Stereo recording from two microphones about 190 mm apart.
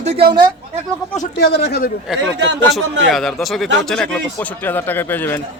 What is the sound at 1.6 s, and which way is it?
Speech, 55° left (ahead or behind).